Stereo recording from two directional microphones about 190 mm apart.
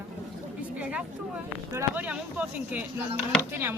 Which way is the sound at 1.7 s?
10° right (ahead or behind).